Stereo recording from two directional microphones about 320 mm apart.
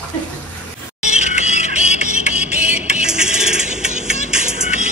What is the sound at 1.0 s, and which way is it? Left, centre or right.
Music, left.